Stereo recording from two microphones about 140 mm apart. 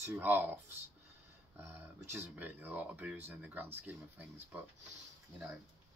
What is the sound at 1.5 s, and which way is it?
Speech, 15° right (ahead or behind).